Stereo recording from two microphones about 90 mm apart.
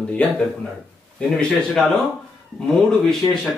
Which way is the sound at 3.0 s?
5° left (ahead or behind).